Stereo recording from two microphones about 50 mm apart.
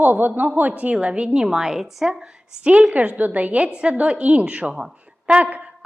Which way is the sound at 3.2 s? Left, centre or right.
Right.